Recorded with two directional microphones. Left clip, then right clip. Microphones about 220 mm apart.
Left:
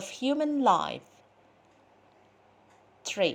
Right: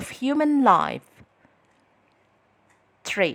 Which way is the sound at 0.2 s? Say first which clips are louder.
Right 6 dB; 20° right (ahead or behind).